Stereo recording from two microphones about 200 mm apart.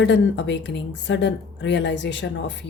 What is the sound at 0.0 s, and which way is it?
Speech, 60° left (ahead or behind).